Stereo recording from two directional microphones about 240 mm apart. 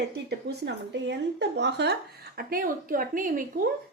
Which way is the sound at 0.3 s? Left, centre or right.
Right.